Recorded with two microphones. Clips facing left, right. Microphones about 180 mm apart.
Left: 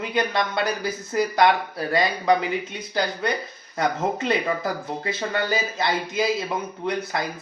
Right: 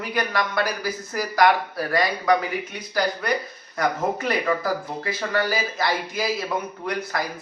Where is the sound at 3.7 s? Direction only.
25° left (ahead or behind).